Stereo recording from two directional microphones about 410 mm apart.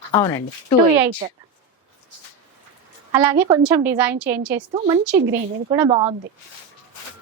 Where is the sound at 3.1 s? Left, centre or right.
Centre; by 5.7 s right.